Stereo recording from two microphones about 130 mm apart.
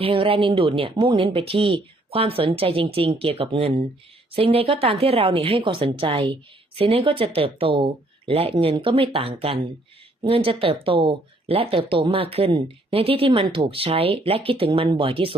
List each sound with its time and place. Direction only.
0.0 s speech: 45° right (ahead or behind)